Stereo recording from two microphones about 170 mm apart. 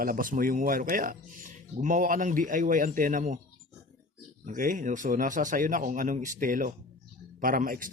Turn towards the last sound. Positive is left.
turn(degrees=-55)  # may be behind; listen again after turning